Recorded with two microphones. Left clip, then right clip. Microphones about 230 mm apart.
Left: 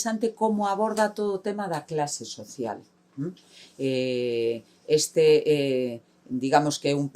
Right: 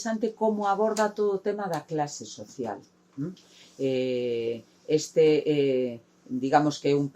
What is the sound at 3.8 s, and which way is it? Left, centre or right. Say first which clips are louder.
Speech: left 1 dB; left.